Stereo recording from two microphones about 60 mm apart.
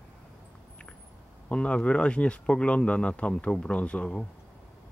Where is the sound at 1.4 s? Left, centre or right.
Centre.